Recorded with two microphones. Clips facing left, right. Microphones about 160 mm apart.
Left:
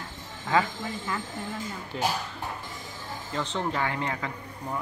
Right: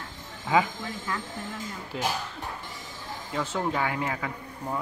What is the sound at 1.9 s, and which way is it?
Speech, 5° right (ahead or behind).